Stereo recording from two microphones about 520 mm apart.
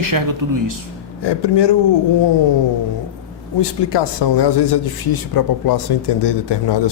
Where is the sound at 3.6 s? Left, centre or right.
Left.